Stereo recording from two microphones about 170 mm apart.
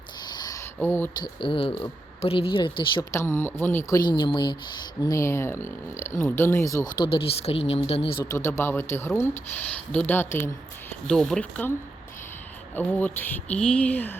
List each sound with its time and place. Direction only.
0.3 s a sound: 20° left (ahead or behind)
0.8 s speech: 15° left (ahead or behind)
1.2 s speech: 30° left (ahead or behind)
3.1 s speech: 15° left (ahead or behind)
5.0 s speech: 15° left (ahead or behind); by 8.1 s 35° left (ahead or behind)
8.2 s speech: 20° left (ahead or behind)
11.1 s speech: 5° left (ahead or behind)
12.7 s speech: 10° left (ahead or behind)